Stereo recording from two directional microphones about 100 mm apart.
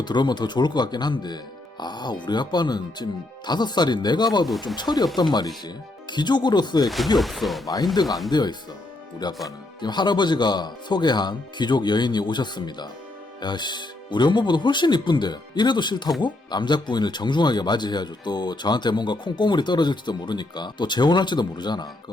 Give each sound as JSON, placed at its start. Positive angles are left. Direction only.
{"t": 0.0, "sound": "speech", "side_deg": 45}
{"t": 6.8, "sound": "speech", "side_deg": 0}
{"t": 8.3, "sound": "speech", "side_deg": 45}